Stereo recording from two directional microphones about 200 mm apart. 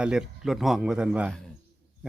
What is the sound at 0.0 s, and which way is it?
Speech, 5° right (ahead or behind).